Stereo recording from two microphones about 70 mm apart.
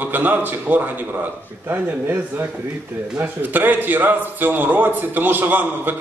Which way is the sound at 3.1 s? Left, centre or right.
Right.